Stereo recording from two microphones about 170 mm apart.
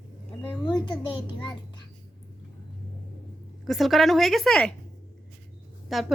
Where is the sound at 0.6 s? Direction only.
25° left (ahead or behind).